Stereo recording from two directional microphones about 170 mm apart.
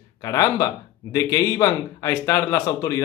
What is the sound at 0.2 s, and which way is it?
A man's voice, 20° left (ahead or behind).